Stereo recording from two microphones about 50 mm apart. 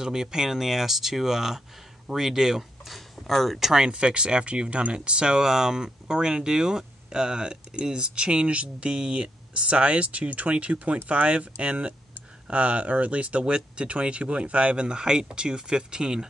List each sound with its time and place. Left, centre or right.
0.0 s speech: centre
2.9 s speech: centre